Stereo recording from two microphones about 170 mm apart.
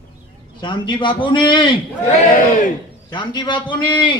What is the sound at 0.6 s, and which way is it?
A man's voice, 30° left (ahead or behind).